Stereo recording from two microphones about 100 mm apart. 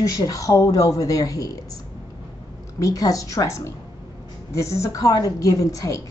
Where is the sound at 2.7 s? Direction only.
35° left (ahead or behind).